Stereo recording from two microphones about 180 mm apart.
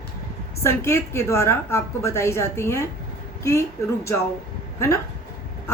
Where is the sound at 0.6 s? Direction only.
15° left (ahead or behind).